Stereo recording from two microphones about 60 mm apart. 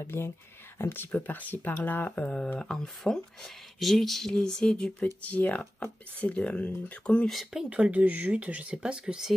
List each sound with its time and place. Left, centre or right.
0.0 s speech: left
1.1 s speech: left; by 4.9 s centre
5.2 s speech: left
7.2 s speech: centre
7.7 s speech: centre